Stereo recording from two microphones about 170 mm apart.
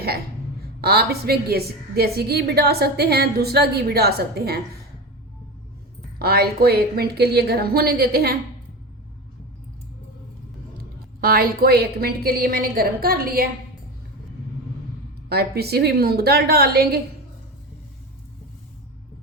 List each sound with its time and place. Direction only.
0.8 s a woman's voice: 65° right (ahead or behind)
6.1 s a woman's voice: 65° right (ahead or behind)
11.2 s a woman's voice: 60° right (ahead or behind)
15.3 s a woman's voice: 70° right (ahead or behind)